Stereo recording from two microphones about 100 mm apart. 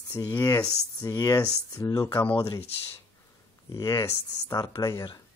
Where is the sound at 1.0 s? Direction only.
40° left (ahead or behind).